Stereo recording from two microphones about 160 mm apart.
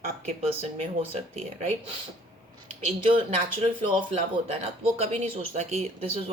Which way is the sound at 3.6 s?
35° right (ahead or behind).